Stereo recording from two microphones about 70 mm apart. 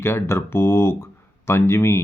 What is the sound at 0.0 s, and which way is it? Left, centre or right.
Speech, left.